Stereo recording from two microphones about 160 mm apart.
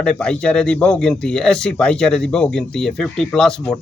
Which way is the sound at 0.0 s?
5° left (ahead or behind).